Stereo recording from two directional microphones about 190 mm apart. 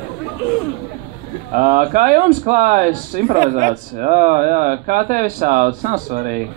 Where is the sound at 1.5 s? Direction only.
40° right (ahead or behind).